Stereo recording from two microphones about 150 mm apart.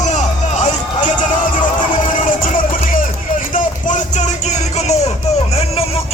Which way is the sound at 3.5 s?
60° left (ahead or behind).